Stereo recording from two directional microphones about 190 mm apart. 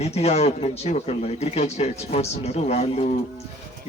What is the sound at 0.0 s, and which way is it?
Speech, 35° left (ahead or behind).